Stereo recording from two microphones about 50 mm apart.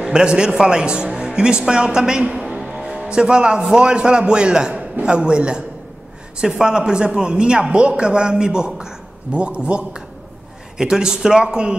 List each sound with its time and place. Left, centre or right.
0.0 s a man's voice: centre